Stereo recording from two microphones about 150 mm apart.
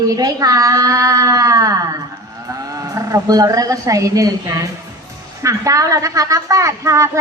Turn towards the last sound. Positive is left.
turn(degrees=-20)  # may be behind; listen again after turning